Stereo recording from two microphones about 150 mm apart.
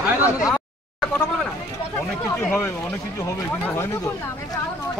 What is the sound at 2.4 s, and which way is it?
Speech, 15° left (ahead or behind).